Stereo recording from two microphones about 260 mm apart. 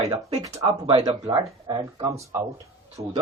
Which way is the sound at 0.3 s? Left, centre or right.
Centre.